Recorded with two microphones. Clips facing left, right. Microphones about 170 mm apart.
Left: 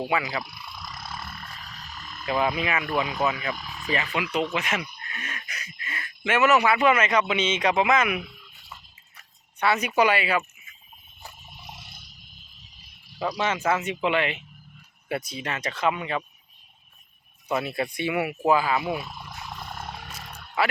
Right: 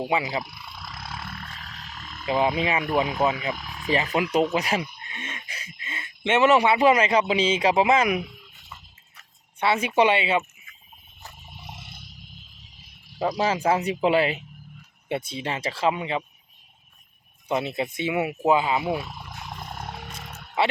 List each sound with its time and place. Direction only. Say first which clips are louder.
0.0 s speech: right 2 dB; 25° right (ahead or behind)
2.0 s speech: right 2 dB; 25° right (ahead or behind)
4.1 s speech: right 6 dB; 45° right (ahead or behind)
9.6 s speech: right 1 dB; 25° right (ahead or behind)
11.5 s a sound: right 2 dB; 25° right (ahead or behind)
13.1 s speech: right 3 dB; 25° right (ahead or behind)
17.5 s speech: right 1 dB; 25° right (ahead or behind)
19.5 s roar: right 1 dB; 20° right (ahead or behind)
20.6 s speech: right 2 dB; 25° right (ahead or behind)